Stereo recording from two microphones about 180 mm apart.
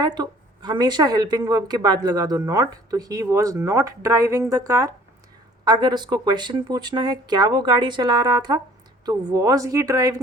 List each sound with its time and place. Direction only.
0.0 s speech: 25° right (ahead or behind)